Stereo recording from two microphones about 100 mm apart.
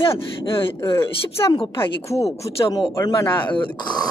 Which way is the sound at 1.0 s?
25° left (ahead or behind).